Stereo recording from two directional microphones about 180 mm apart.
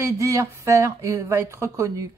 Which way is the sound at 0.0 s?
15° right (ahead or behind).